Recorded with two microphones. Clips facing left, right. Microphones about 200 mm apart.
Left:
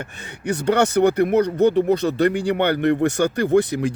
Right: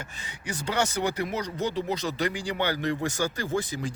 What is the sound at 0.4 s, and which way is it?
Speech, 60° left (ahead or behind).